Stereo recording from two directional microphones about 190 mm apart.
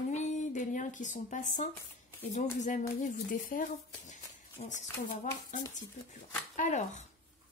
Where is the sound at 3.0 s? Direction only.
45° left (ahead or behind).